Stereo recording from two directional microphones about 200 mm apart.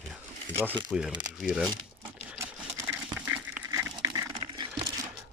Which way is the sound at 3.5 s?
15° right (ahead or behind).